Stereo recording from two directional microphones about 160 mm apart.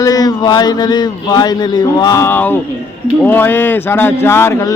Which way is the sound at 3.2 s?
10° left (ahead or behind).